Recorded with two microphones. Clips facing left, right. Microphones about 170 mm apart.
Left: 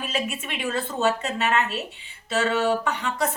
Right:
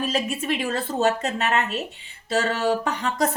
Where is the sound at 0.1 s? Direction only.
40° right (ahead or behind).